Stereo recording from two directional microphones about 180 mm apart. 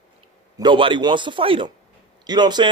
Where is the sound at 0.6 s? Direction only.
25° right (ahead or behind).